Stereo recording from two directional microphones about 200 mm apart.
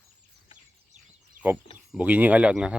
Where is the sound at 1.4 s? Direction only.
40° right (ahead or behind).